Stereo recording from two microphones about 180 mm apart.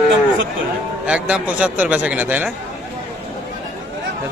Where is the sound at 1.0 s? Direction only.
5° right (ahead or behind).